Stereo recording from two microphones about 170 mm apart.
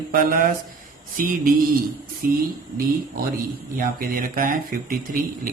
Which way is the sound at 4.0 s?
55° right (ahead or behind).